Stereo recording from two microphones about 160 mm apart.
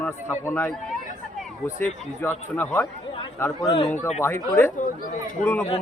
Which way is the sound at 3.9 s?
45° left (ahead or behind).